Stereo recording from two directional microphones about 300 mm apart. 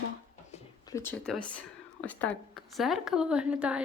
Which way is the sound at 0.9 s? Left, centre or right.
Centre.